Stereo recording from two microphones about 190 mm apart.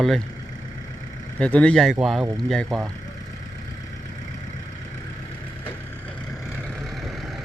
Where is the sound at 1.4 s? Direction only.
5° left (ahead or behind).